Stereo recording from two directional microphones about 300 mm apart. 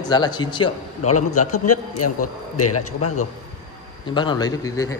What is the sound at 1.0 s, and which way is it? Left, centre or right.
A man's voice, left.